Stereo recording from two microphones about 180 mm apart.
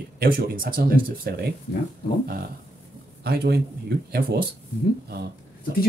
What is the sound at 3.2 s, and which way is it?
Speech, 60° right (ahead or behind).